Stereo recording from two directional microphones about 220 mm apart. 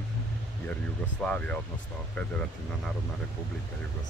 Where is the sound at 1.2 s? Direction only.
5° left (ahead or behind).